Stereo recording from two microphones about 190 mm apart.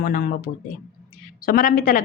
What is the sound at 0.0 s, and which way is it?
Speech, 50° left (ahead or behind).